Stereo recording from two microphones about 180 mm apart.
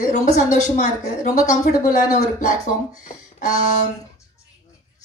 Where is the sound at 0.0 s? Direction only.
45° left (ahead or behind).